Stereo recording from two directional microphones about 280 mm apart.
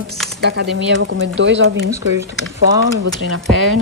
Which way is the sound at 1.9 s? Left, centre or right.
Centre.